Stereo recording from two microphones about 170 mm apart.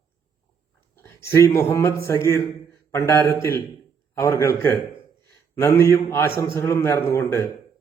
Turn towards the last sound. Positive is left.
turn(degrees=15)  # may be behind; listen again after turning